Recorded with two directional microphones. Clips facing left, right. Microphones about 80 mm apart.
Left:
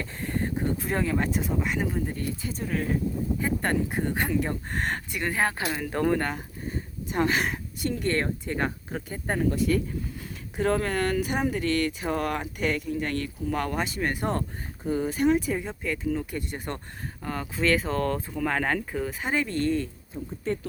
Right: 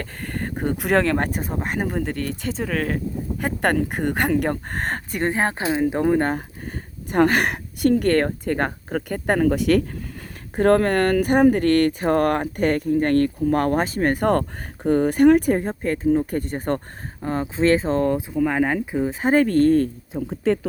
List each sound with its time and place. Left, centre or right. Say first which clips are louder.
0.0 s a sound: right 1 dB; right
0.8 s speech: right 11 dB; right
3.4 s a woman's voice: right 7 dB; right
4.7 s speech: right 3 dB; right
5.3 s speech: right 3 dB; right
7.1 s a woman's voice: right 7 dB; right
10.5 s speech: right 9 dB; right; by 19.1 s centre
19.2 s speech: right 11 dB; right
20.4 s speech: right 9 dB; right